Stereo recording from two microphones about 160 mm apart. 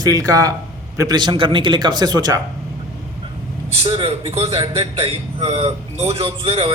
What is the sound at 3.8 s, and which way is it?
A man's voice, 35° right (ahead or behind).